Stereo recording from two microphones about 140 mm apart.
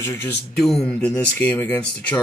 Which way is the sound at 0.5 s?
Centre (ahead or behind).